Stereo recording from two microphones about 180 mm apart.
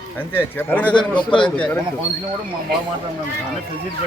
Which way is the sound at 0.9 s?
25° left (ahead or behind).